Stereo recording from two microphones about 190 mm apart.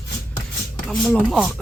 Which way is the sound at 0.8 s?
5° left (ahead or behind).